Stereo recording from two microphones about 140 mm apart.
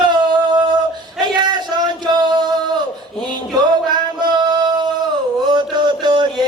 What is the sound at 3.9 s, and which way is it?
Music, 30° right (ahead or behind).